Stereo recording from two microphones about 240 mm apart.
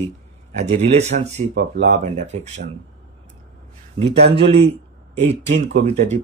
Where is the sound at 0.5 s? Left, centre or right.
Right.